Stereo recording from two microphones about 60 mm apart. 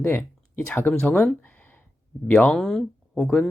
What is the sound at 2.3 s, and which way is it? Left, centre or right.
Speech, centre.